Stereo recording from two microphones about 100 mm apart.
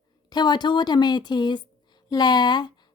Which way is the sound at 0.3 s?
45° left (ahead or behind).